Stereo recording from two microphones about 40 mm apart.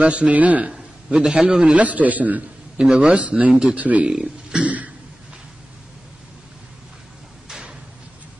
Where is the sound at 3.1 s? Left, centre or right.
Right.